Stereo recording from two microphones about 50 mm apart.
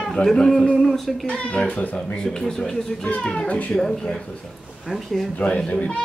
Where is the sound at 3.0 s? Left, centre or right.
Left.